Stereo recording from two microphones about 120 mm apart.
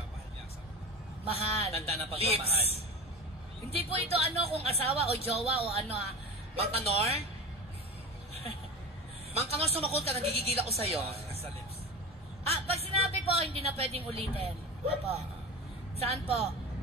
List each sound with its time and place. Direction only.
1.6 s speech: 55° right (ahead or behind)
9.4 s speech: 55° right (ahead or behind)
12.4 s speech: 60° right (ahead or behind)